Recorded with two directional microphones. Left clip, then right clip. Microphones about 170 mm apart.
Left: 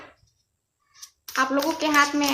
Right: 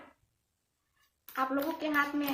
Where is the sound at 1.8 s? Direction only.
25° left (ahead or behind).